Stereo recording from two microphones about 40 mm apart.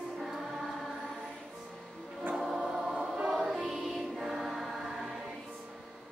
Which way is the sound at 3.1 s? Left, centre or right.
Centre.